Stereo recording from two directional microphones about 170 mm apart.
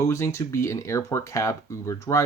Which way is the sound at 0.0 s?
15° left (ahead or behind).